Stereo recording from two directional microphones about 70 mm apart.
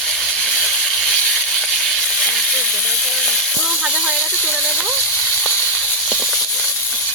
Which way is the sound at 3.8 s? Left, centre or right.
Centre.